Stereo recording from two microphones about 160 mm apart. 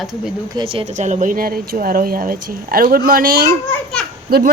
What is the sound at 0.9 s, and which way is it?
Speech, 50° right (ahead or behind).